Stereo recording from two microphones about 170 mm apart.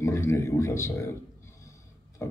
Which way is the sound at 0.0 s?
15° left (ahead or behind).